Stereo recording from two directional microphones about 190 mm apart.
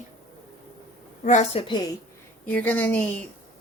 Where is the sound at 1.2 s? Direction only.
40° left (ahead or behind).